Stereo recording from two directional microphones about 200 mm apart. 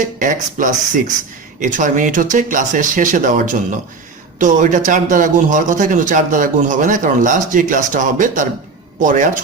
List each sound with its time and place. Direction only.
0.0 s a man's voice: 40° right (ahead or behind)